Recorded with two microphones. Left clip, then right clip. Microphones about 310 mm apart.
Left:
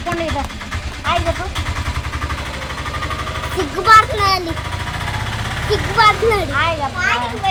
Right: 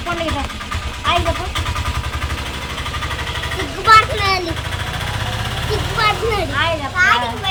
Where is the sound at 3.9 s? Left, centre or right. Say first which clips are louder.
Left 1 dB; centre.